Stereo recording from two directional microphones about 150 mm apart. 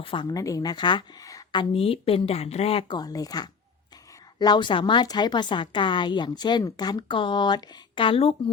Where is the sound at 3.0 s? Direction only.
25° left (ahead or behind).